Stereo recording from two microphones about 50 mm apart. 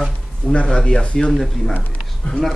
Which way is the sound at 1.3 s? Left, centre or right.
Centre.